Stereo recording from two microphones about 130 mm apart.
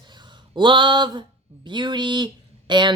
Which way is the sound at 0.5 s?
35° right (ahead or behind).